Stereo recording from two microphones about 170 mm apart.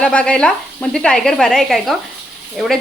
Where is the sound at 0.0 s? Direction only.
5° left (ahead or behind).